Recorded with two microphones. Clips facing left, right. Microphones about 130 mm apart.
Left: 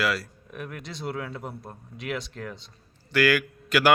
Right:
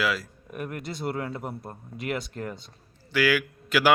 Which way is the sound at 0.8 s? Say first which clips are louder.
Right 4 dB; 50° right (ahead or behind).